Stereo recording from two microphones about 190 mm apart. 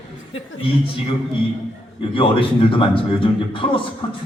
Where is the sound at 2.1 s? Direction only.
25° left (ahead or behind).